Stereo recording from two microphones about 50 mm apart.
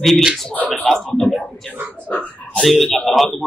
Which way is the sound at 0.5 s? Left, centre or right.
Left.